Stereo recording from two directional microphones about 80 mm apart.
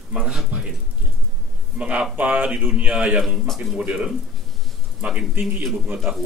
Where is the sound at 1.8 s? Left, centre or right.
Centre.